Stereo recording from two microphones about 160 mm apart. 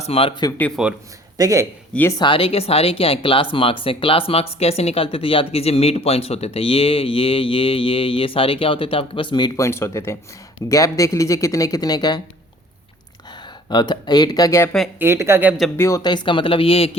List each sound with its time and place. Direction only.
0.0 s speech: 35° left (ahead or behind)
0.4 s speech: 15° left (ahead or behind)
1.4 s a man's voice: 20° right (ahead or behind)
1.9 s speech: 10° left (ahead or behind)
2.1 s speech: 30° left (ahead or behind)
9.6 s speech: 15° left (ahead or behind)
13.7 s speech: 25° left (ahead or behind)
14.9 s speech: 15° right (ahead or behind)
15.8 s speech: 20° left (ahead or behind)